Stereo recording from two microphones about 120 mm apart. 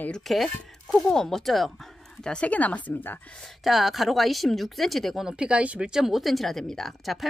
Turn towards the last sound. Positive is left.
turn(degrees=0)  # may be behind; listen again after turning